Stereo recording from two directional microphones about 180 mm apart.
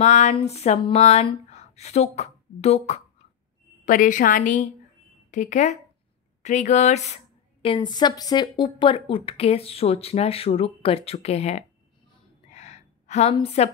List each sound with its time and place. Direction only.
0.0 s a woman's voice: 40° left (ahead or behind)
7.6 s speech: 25° left (ahead or behind)
12.4 s a sound: 40° left (ahead or behind)